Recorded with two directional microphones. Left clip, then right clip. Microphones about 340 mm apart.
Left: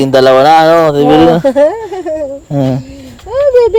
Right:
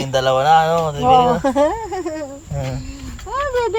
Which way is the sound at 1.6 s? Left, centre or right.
Right.